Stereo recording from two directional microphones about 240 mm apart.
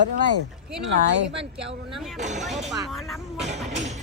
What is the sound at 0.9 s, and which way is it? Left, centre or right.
Speech, right.